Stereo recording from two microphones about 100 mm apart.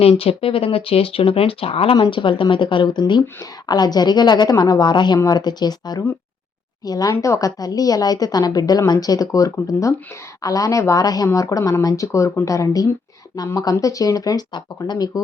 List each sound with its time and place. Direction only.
0.0 s speech: 75° left (ahead or behind)
2.0 s a woman's voice: 55° left (ahead or behind); by 15.2 s 40° left (ahead or behind)